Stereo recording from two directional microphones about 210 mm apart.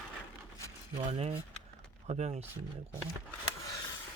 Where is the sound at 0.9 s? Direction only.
30° right (ahead or behind).